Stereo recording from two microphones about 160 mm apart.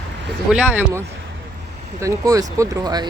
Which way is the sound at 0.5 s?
10° right (ahead or behind).